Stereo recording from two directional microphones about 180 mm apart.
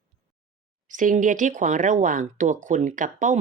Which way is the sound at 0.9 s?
45° right (ahead or behind).